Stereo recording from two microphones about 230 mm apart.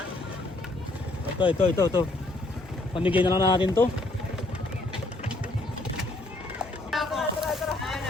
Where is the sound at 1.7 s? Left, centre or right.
Centre.